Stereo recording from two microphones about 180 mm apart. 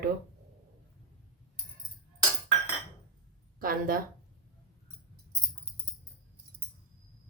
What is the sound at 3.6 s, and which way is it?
Speech, 50° right (ahead or behind).